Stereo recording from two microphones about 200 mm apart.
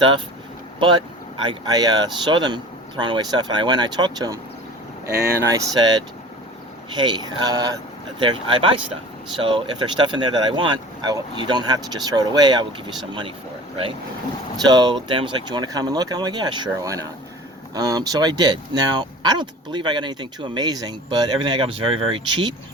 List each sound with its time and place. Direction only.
0.8 s speech: 25° right (ahead or behind)
5.5 s speech: 20° right (ahead or behind)
14.7 s speech: 20° right (ahead or behind)